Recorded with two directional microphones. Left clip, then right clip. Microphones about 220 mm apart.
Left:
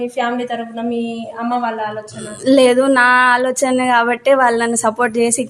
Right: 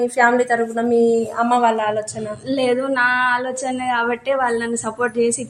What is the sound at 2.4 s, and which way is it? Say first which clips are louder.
Speech: left 9 dB; 50° left (ahead or behind).